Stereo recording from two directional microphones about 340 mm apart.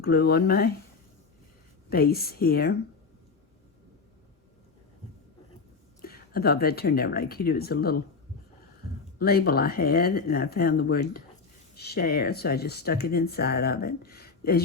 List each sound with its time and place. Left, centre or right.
0.0 s speech: left
1.9 s speech: left
6.0 s speech: left
9.1 s speech: left